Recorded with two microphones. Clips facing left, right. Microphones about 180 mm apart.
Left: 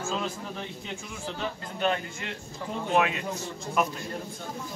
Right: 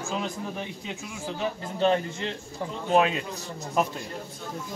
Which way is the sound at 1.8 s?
25° right (ahead or behind).